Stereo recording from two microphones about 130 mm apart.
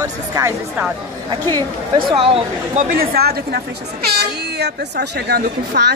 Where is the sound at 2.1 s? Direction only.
45° right (ahead or behind).